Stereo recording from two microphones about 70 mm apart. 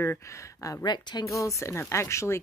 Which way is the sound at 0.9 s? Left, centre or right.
Left.